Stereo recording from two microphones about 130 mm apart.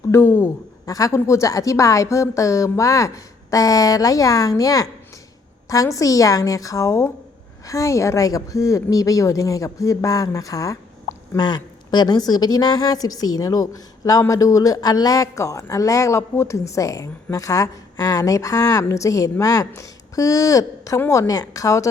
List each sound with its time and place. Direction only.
0.1 s a woman's voice: 20° left (ahead or behind)